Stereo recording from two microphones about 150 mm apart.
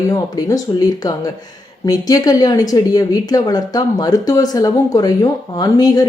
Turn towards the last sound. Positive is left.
turn(degrees=25)  # may be behind; listen again after turning